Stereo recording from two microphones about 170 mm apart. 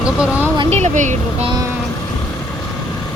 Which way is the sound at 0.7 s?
45° right (ahead or behind).